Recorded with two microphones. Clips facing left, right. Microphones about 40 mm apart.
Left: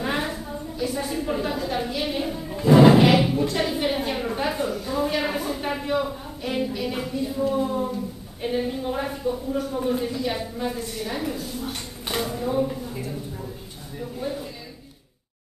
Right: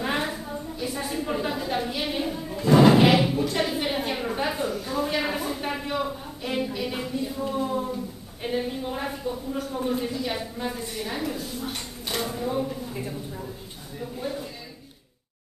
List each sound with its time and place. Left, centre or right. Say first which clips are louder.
0.0 s a sound: left 1 dB; centre
7.5 s a woman's voice: left 3 dB; centre
10.8 s a woman's voice: left 2 dB; centre
11.1 s a woman's voice: left 1 dB; centre
14.2 s a woman's voice: left 2 dB; centre